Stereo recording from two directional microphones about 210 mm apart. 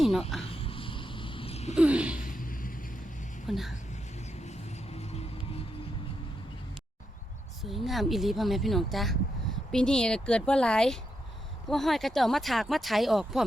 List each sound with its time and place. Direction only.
0.4 s a sound: 25° left (ahead or behind)
1.7 s a sound: 5° right (ahead or behind)
2.2 s vehicle: 40° left (ahead or behind)
3.4 s speech: centre (ahead or behind)
4.4 s vehicle: 30° left (ahead or behind)
7.6 s speech: centre (ahead or behind)